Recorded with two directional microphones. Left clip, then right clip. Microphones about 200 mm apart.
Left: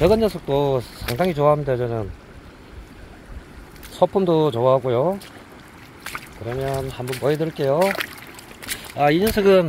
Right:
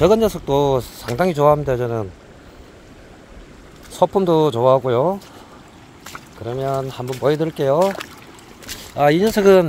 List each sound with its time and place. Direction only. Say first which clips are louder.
0.0 s speech: right 3 dB; 15° right (ahead or behind)
3.9 s speech: right 2 dB; 15° right (ahead or behind)
6.4 s speech: right 4 dB; 15° right (ahead or behind)
8.9 s speech: right 3 dB; 20° right (ahead or behind)